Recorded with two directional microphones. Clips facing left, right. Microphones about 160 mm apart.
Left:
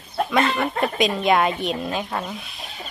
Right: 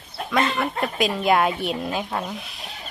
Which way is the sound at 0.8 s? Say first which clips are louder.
Left 2 dB; 5° right (ahead or behind).